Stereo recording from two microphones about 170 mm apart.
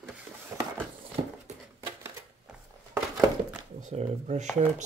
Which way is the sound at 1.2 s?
35° right (ahead or behind).